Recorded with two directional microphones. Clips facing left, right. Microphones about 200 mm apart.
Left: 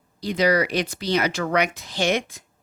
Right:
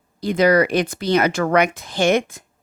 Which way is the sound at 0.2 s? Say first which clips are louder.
Right 5 dB; 50° right (ahead or behind).